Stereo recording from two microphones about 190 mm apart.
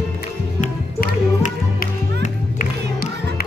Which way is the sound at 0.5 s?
45° left (ahead or behind).